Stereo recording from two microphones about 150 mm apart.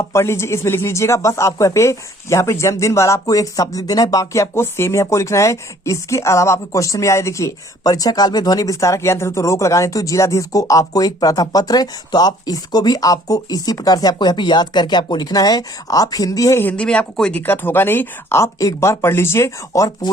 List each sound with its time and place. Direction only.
0.0 s speech: 20° left (ahead or behind)